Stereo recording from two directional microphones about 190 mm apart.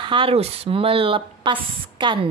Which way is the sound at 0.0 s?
25° right (ahead or behind).